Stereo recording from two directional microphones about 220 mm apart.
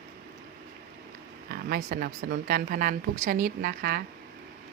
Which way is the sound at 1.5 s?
45° right (ahead or behind).